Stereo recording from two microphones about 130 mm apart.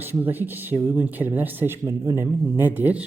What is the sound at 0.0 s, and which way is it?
Speech, 15° right (ahead or behind).